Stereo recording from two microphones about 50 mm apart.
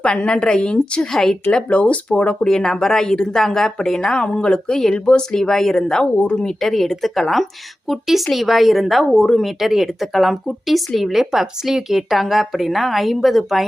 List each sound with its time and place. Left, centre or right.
0.0 s a woman's voice: left
1.7 s a woman's voice: left; by 9.2 s centre
9.2 s a woman's voice: centre
9.6 s speech: centre